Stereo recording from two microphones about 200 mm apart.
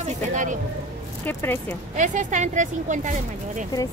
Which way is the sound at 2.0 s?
40° right (ahead or behind).